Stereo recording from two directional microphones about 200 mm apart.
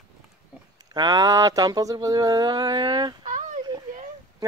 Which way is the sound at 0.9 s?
20° right (ahead or behind).